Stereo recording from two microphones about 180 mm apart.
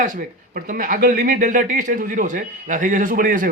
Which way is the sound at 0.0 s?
50° right (ahead or behind).